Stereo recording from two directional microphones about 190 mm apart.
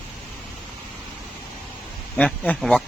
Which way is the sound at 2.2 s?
5° left (ahead or behind).